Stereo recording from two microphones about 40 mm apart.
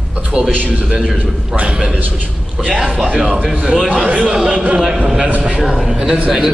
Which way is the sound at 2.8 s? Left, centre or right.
Centre.